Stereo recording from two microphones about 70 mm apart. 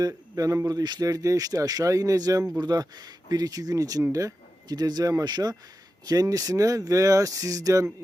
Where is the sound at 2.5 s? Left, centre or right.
Right.